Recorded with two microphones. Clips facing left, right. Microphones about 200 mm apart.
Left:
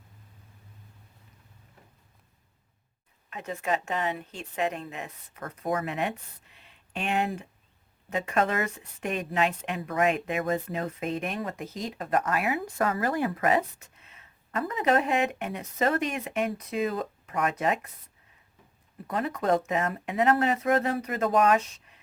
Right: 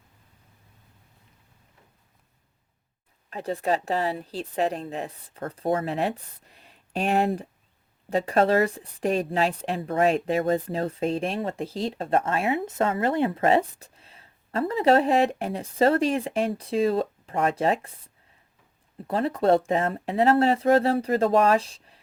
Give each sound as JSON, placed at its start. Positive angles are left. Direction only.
{"t": 3.2, "sound": "a woman's voice", "side_deg": -35}
{"t": 19.0, "sound": "a woman's voice", "side_deg": -30}